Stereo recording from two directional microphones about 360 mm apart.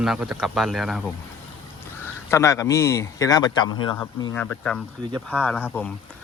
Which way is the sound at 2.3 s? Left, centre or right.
Centre.